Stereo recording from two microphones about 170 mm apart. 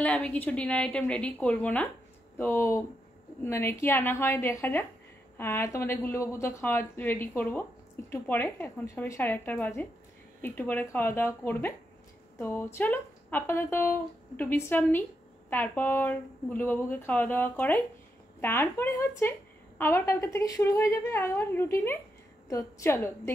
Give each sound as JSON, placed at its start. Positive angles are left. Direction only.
{"t": 0.0, "sound": "speech", "side_deg": 5}